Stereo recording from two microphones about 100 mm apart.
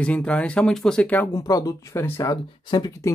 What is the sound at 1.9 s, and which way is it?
Speech, 25° left (ahead or behind).